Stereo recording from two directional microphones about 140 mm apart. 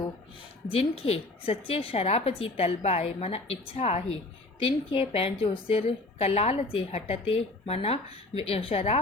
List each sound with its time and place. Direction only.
0.7 s a woman's voice: 45° left (ahead or behind)